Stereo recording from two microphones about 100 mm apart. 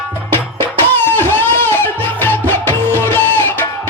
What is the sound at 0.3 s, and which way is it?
Music, 20° left (ahead or behind).